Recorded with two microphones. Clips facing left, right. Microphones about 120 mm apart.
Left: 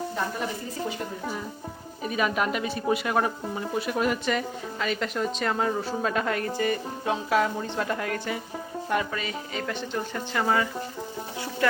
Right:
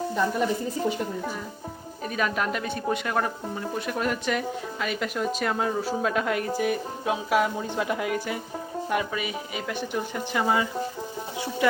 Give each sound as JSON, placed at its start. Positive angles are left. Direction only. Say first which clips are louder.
{"t": 2.0, "sound": "speech", "louder": "left 1 dB", "side_deg": 5}